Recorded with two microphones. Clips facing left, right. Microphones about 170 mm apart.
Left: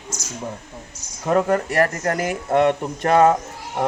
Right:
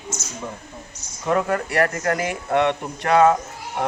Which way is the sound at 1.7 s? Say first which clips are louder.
Left 1 dB; 35° left (ahead or behind).